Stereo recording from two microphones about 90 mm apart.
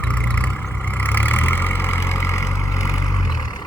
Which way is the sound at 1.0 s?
20° left (ahead or behind).